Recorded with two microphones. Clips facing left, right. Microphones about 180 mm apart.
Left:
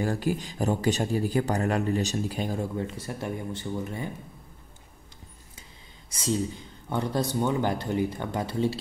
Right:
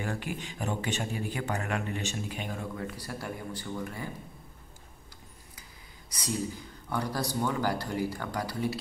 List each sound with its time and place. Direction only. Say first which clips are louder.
0.0 s speech: left 7 dB; 35° left (ahead or behind)
6.0 s a man's voice: left 5 dB; 25° left (ahead or behind)